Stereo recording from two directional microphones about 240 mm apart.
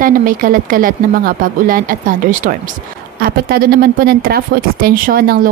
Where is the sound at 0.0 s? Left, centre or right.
Right.